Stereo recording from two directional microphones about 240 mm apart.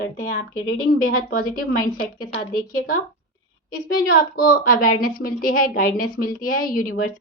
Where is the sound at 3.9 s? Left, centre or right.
Left.